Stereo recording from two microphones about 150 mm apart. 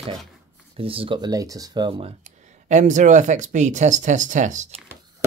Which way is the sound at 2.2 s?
50° right (ahead or behind).